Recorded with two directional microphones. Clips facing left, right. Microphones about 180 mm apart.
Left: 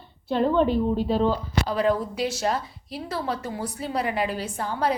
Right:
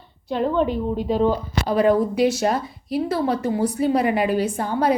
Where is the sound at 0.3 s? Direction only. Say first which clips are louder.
Even; 10° right (ahead or behind).